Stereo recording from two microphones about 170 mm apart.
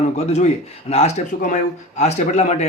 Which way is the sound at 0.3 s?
40° left (ahead or behind).